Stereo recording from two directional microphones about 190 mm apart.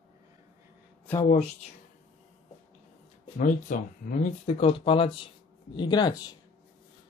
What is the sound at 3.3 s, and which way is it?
Speech, 45° left (ahead or behind).